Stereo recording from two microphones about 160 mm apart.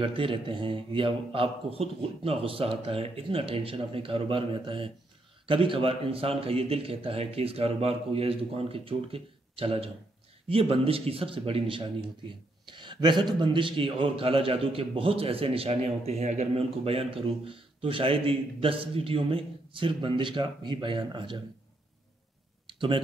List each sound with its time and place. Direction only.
0.0 s a man's voice: 35° right (ahead or behind)
22.8 s speech: 30° right (ahead or behind)